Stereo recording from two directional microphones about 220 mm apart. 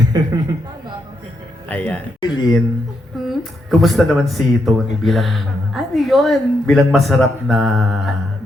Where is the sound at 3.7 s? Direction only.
Centre (ahead or behind).